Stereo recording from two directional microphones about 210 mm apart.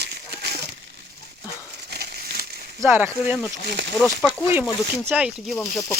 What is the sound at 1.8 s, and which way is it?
Crumpling, 50° right (ahead or behind).